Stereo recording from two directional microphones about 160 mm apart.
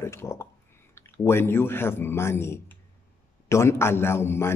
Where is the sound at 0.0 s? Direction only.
15° left (ahead or behind).